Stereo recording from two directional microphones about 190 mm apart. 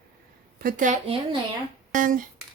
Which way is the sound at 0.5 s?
45° right (ahead or behind).